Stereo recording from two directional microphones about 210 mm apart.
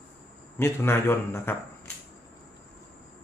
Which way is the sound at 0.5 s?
10° left (ahead or behind).